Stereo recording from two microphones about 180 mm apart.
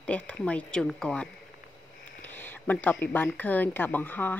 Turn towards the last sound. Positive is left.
turn(degrees=10)  # may be behind; listen again after turning